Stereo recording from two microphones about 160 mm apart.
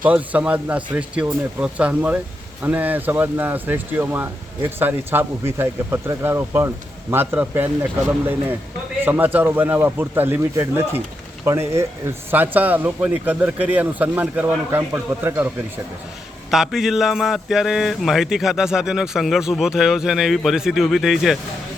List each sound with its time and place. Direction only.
0.0 s speech: 10° right (ahead or behind)
9.0 s speech: 10° right (ahead or behind)
16.5 s speech: centre (ahead or behind)